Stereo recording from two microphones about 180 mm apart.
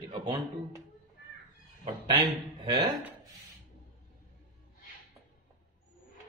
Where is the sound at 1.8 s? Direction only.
25° right (ahead or behind).